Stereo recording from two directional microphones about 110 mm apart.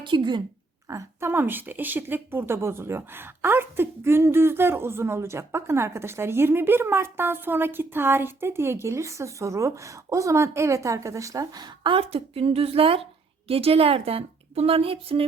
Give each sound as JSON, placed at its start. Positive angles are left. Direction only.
{"t": 0.0, "sound": "a woman's voice", "side_deg": -45}
{"t": 0.9, "sound": "a woman's voice", "side_deg": -25}